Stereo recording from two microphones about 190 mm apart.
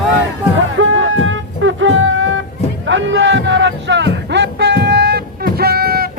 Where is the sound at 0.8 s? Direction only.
90° right.